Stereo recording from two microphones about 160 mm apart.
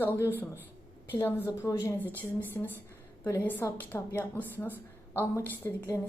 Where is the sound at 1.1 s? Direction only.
15° left (ahead or behind).